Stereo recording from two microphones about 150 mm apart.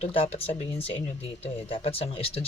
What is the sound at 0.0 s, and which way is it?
Speech, 40° left (ahead or behind).